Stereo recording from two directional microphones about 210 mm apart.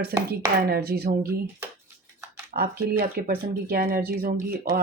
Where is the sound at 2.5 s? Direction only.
45° right (ahead or behind).